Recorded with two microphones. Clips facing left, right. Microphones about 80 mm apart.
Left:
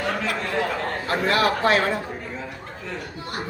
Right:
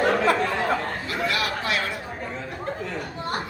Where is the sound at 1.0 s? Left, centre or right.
Left.